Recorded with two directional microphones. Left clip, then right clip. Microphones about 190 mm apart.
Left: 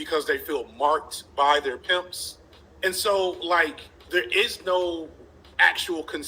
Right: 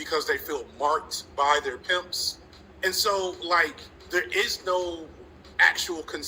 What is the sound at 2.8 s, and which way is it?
A man's voice, 40° left (ahead or behind).